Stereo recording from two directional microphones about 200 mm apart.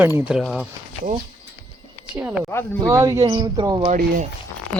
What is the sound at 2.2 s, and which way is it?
Speech, 5° right (ahead or behind).